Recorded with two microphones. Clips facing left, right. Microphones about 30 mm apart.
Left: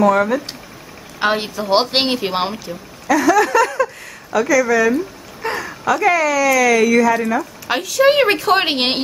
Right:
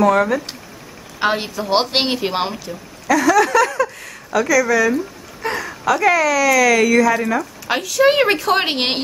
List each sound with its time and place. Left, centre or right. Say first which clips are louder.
0.0 s speech: even; centre